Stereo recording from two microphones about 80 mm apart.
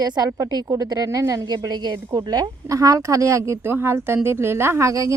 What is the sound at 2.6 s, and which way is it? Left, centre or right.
A woman's voice, right.